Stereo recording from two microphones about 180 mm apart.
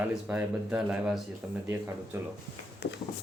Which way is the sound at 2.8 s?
65° left (ahead or behind).